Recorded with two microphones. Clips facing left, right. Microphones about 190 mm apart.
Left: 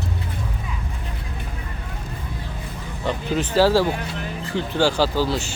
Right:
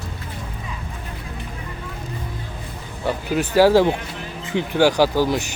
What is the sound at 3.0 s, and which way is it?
Speech, 10° right (ahead or behind).